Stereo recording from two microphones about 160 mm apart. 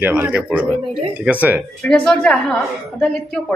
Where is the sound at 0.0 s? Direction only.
10° right (ahead or behind).